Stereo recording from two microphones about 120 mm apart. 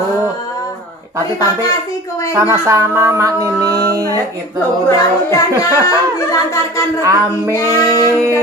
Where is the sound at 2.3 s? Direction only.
25° right (ahead or behind).